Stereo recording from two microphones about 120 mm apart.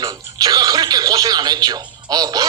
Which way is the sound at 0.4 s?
30° right (ahead or behind).